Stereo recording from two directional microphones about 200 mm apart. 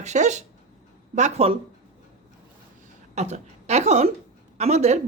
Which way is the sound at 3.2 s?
35° right (ahead or behind).